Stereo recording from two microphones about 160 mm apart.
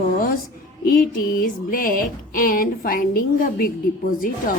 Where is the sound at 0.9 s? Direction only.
60° left (ahead or behind).